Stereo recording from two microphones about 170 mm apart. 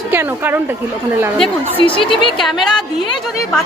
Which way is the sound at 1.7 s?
30° left (ahead or behind).